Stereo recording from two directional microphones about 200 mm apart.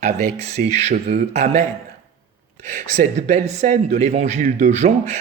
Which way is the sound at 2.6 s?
40° right (ahead or behind).